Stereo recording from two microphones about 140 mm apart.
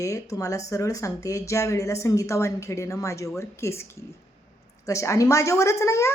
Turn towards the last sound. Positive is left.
turn(degrees=20)  # may be behind; listen again after turning